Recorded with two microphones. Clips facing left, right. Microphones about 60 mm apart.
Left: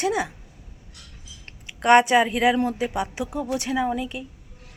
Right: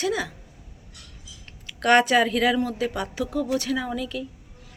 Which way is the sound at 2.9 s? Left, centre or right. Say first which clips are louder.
Left 1 dB; centre.